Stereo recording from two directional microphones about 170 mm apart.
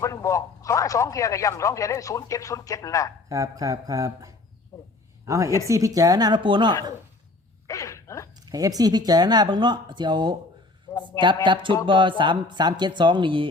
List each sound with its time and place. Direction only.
0.0 s speech: 20° left (ahead or behind)
3.2 s a woman's voice: 20° right (ahead or behind)
7.7 s a sound: 20° left (ahead or behind)
8.4 s speech: 20° right (ahead or behind)
10.9 s a sound: 15° left (ahead or behind)
11.4 s speech: 30° right (ahead or behind)